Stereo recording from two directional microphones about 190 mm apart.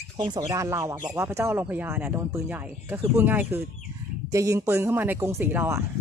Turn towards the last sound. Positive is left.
turn(degrees=-10)  # may be behind; listen again after turning